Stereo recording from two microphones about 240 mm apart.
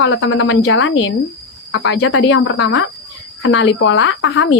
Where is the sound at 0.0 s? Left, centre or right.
Left.